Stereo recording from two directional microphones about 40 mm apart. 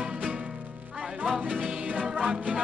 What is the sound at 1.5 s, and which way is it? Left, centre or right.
Music, right.